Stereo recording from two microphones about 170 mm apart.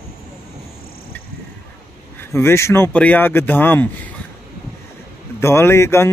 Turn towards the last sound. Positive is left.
turn(degrees=15)  # may be behind; listen again after turning